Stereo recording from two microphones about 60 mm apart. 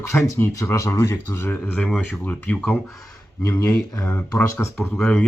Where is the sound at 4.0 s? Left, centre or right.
Left.